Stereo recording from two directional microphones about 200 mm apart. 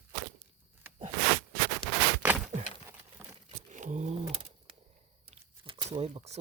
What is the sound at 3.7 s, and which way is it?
Roaring cats, 35° right (ahead or behind).